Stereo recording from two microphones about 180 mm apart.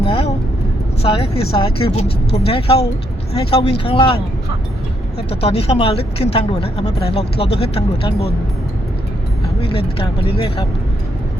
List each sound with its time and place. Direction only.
0.0 s vehicle: 30° left (ahead or behind)
1.0 s speech: 30° left (ahead or behind)
5.4 s speech: 35° left (ahead or behind)
9.6 s speech: 30° left (ahead or behind)